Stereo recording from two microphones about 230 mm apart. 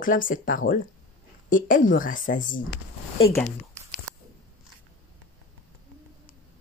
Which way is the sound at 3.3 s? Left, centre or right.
Centre.